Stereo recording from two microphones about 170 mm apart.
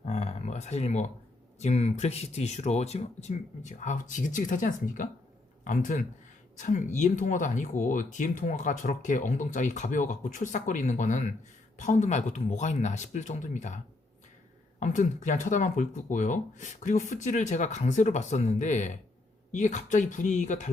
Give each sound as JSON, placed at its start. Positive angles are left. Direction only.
{"t": 0.1, "sound": "a sound", "side_deg": 40}
{"t": 1.5, "sound": "speech", "side_deg": 40}
{"t": 14.8, "sound": "speech", "side_deg": 45}